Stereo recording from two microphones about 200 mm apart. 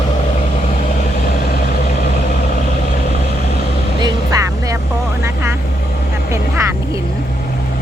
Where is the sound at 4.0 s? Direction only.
20° right (ahead or behind).